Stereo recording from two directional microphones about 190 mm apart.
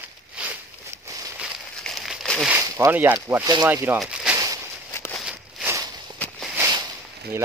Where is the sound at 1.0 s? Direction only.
20° right (ahead or behind).